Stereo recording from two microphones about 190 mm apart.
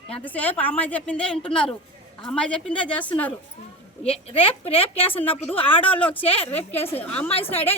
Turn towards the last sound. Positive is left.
turn(degrees=10)  # may be behind; listen again after turning